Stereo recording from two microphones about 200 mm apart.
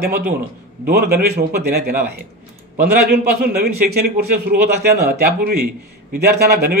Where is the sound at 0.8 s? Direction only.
50° right (ahead or behind).